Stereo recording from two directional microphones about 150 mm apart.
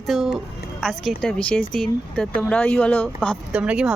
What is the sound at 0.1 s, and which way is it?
A woman's voice, centre (ahead or behind).